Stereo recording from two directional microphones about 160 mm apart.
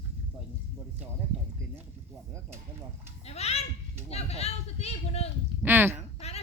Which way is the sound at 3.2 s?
40° left (ahead or behind).